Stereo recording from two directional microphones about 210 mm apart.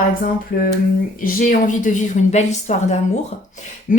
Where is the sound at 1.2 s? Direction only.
40° left (ahead or behind).